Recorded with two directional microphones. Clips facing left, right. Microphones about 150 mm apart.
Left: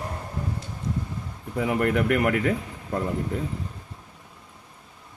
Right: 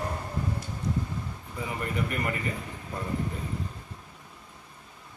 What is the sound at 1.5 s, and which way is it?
Speech, 85° left.